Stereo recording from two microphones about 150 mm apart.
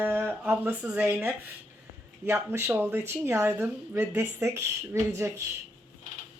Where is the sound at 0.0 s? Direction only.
15° right (ahead or behind).